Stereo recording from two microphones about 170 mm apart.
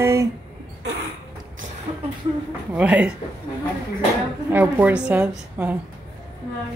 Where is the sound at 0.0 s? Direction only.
15° right (ahead or behind).